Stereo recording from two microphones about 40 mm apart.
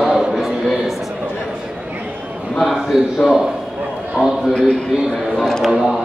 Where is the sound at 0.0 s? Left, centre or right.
Centre.